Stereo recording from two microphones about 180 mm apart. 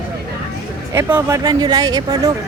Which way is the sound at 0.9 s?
15° right (ahead or behind).